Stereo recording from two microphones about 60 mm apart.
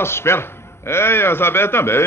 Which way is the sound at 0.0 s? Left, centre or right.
Left.